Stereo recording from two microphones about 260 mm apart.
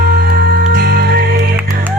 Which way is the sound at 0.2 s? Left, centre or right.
Right.